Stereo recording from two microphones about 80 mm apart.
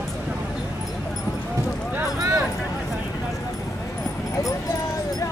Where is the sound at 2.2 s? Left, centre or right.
Right.